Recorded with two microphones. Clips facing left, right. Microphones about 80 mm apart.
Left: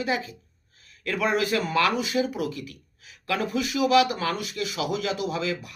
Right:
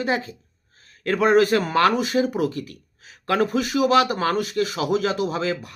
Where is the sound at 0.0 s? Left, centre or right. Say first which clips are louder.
Right 3 dB; right.